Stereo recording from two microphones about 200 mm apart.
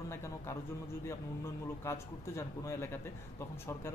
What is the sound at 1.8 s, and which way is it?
A man's voice, 15° left (ahead or behind).